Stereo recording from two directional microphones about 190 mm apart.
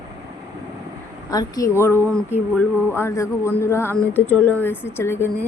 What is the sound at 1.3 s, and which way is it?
Speech, 20° left (ahead or behind).